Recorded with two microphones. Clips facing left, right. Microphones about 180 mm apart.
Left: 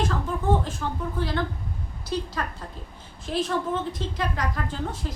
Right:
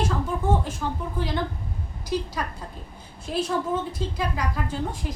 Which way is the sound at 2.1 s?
10° right (ahead or behind).